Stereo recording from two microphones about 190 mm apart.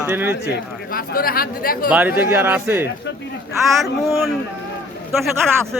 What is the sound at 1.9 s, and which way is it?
Speech, 10° right (ahead or behind).